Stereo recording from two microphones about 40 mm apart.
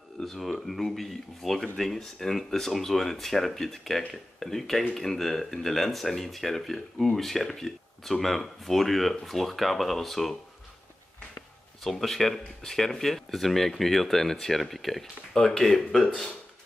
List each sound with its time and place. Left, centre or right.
0.2 s speech: centre
11.8 s speech: centre